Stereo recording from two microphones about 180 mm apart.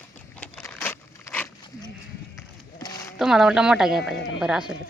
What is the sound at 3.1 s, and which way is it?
Speech, 5° right (ahead or behind).